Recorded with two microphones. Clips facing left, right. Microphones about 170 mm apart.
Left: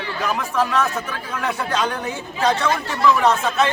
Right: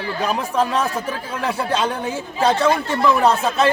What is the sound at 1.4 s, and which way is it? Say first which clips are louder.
Speech: right 2 dB; 30° right (ahead or behind).